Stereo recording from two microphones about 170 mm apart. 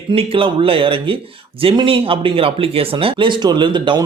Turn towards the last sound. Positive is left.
turn(degrees=-30)  # may be behind; listen again after turning